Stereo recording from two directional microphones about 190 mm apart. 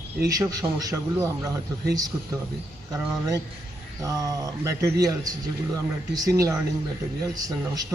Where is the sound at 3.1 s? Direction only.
20° right (ahead or behind).